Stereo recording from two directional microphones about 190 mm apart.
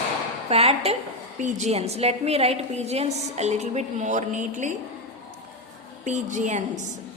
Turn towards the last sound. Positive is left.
turn(degrees=-40)  # may be behind; listen again after turning